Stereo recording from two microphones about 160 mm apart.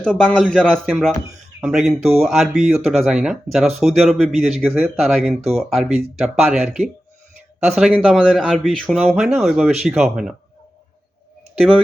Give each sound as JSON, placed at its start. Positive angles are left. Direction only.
{"t": 0.0, "sound": "a man's voice", "side_deg": 5}
{"t": 5.4, "sound": "speech", "side_deg": -40}
{"t": 5.7, "sound": "a man's voice", "side_deg": 0}